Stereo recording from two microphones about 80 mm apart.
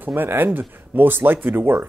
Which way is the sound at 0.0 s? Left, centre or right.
Right.